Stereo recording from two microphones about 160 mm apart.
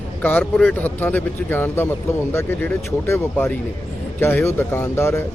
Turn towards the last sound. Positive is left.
turn(degrees=15)  # may be behind; listen again after turning